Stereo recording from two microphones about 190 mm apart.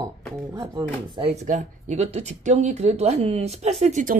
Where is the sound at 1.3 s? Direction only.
35° right (ahead or behind).